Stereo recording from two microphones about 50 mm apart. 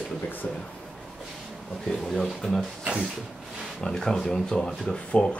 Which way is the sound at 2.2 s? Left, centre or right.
Centre.